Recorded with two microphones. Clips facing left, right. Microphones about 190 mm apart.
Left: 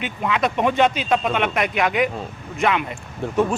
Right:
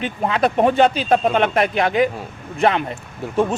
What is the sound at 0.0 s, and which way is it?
Speech, 35° right (ahead or behind).